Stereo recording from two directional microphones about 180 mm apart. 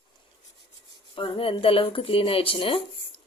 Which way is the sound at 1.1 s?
30° left (ahead or behind).